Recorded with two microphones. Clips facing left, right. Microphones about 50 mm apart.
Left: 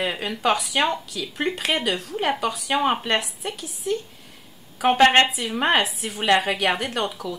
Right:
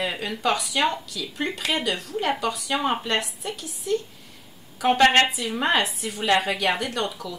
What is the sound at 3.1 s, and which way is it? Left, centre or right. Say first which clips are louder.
Speech: left 2 dB; centre.